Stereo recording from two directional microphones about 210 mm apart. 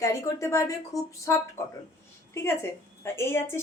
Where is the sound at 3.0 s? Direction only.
10° left (ahead or behind).